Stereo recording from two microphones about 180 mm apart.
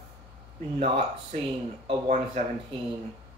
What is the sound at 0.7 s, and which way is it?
A woman's voice, 40° right (ahead or behind).